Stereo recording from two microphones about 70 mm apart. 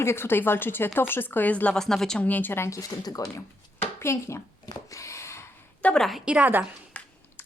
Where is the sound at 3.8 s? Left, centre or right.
Left.